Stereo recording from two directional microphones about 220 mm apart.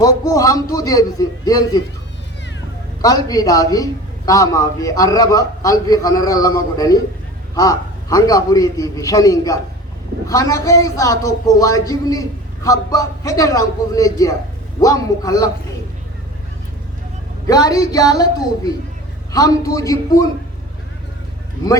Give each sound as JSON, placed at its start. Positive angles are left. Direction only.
{"t": 0.0, "sound": "a man's voice", "side_deg": 15}
{"t": 3.0, "sound": "a man's voice", "side_deg": 15}
{"t": 17.4, "sound": "a man's voice", "side_deg": 15}